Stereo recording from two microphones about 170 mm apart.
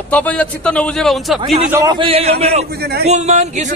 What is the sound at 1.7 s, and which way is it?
A man's voice, 25° right (ahead or behind).